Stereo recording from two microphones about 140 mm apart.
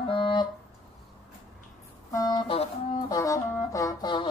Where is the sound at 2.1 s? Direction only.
30° left (ahead or behind).